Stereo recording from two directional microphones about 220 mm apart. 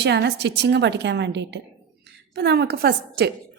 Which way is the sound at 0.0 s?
50° right (ahead or behind).